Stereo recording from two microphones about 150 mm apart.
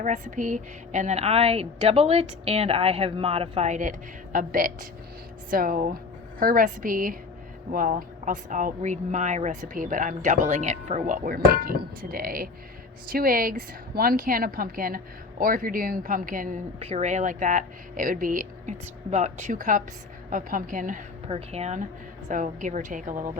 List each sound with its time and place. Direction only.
0.0 s a woman's voice: 55° right (ahead or behind)
10.5 s a woman's voice: 50° right (ahead or behind)
16.8 s speech: 45° right (ahead or behind); by 18.7 s 65° right (ahead or behind)
19.1 s speech: 50° right (ahead or behind)
21.2 s a woman's voice: 40° right (ahead or behind); by 23.3 s 60° right (ahead or behind)